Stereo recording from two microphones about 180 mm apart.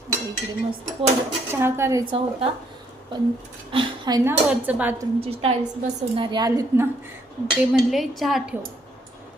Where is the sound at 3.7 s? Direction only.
25° right (ahead or behind).